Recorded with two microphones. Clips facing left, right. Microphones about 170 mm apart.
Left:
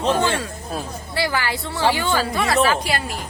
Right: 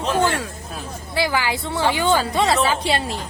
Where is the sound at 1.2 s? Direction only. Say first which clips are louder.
Right 2 dB; 15° right (ahead or behind).